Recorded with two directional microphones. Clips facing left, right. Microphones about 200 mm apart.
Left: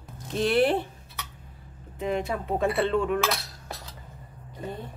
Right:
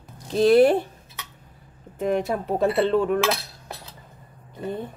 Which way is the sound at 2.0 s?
45° right (ahead or behind).